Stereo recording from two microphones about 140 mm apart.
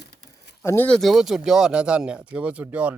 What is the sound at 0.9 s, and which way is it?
Speech, centre (ahead or behind).